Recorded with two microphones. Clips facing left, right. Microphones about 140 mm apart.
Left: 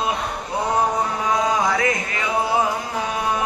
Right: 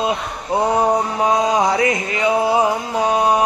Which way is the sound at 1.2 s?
25° right (ahead or behind).